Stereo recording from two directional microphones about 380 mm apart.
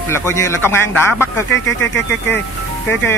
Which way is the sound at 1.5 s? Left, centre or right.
Left.